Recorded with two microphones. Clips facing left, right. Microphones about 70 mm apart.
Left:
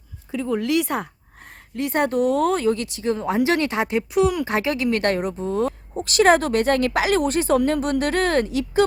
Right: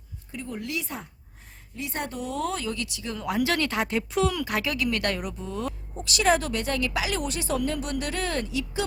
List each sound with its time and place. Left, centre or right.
0.3 s speech: left
1.7 s speech: left; by 4.4 s centre
4.4 s speech: left